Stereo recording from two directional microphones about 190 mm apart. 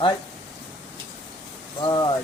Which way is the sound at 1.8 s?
25° left (ahead or behind).